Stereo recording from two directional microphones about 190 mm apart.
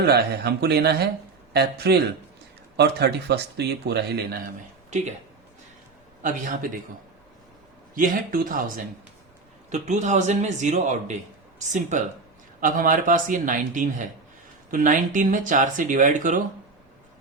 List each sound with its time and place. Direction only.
0.0 s speech: 55° right (ahead or behind)
4.9 s speech: 40° right (ahead or behind)
6.2 s speech: 45° right (ahead or behind)
7.9 s a man's voice: 45° right (ahead or behind)